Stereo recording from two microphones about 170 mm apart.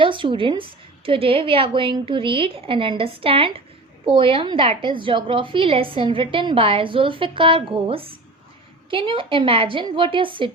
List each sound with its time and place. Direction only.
0.0 s a woman's voice: 30° right (ahead or behind)